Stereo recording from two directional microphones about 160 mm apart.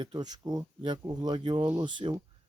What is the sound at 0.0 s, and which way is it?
Speech, 25° right (ahead or behind).